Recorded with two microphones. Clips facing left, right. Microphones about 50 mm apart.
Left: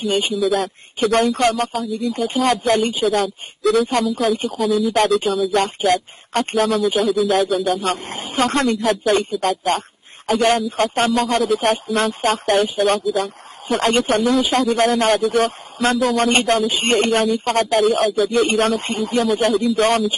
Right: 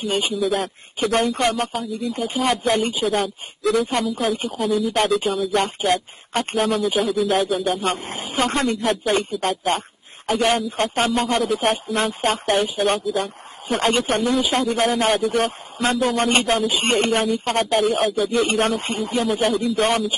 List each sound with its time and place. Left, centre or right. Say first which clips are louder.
0.0 s speech: left 3 dB; centre